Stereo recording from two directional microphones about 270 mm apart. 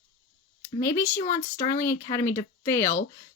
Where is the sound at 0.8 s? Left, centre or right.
Centre.